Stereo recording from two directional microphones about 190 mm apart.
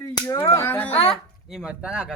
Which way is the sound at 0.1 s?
20° left (ahead or behind).